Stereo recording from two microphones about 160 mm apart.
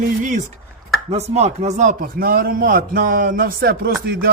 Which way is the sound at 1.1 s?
45° right (ahead or behind).